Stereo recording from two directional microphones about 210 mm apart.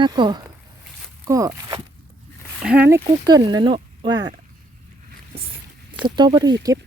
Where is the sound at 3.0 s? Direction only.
20° right (ahead or behind).